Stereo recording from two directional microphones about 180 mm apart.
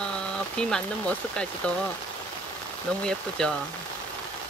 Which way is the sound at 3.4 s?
5° left (ahead or behind).